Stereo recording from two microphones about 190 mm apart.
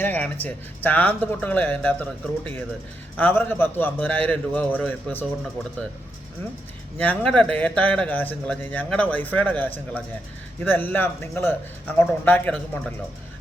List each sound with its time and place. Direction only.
0.0 s speech: 10° left (ahead or behind)
7.0 s speech: 5° left (ahead or behind)